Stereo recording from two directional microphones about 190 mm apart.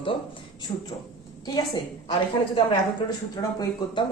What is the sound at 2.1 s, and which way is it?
Speech, 25° left (ahead or behind).